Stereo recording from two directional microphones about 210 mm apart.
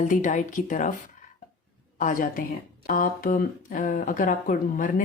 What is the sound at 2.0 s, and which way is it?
Speech, 40° left (ahead or behind).